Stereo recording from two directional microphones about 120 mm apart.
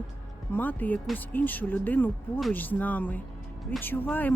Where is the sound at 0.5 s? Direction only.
15° left (ahead or behind).